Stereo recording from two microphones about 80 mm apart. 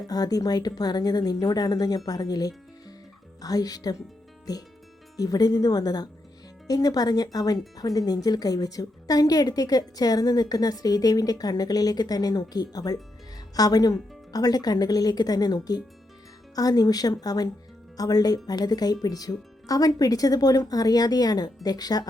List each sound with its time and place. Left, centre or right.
0.1 s a woman's voice: left